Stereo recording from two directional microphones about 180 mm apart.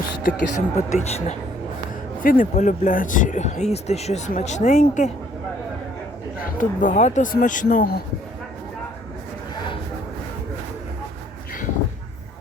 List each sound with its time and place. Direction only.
0.2 s speech: 45° left (ahead or behind)
2.2 s speech: 50° left (ahead or behind)
6.4 s speech: 45° left (ahead or behind)